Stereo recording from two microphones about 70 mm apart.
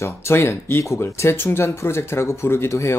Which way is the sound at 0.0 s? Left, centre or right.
Left.